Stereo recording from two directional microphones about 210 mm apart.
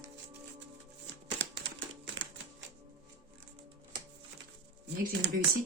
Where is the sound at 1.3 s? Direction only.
60° right (ahead or behind).